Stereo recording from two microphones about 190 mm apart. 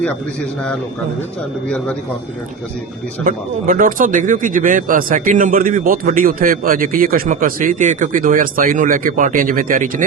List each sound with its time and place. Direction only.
1.6 s a man's voice: 5° left (ahead or behind)
3.2 s speech: 45° right (ahead or behind)